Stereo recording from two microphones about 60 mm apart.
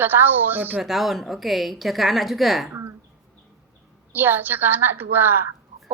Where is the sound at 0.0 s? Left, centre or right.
Right.